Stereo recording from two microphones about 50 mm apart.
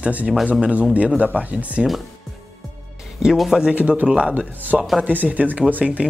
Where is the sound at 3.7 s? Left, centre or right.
Right.